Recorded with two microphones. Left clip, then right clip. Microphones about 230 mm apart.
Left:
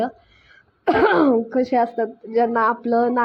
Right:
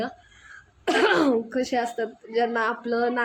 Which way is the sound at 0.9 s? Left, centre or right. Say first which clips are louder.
Left 5 dB; centre.